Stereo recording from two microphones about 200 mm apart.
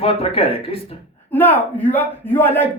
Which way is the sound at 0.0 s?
30° left (ahead or behind).